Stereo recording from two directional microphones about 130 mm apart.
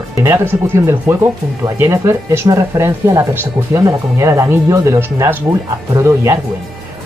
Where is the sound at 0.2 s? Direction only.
20° right (ahead or behind).